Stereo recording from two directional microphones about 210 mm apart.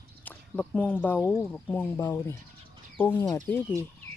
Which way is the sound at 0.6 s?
5° left (ahead or behind).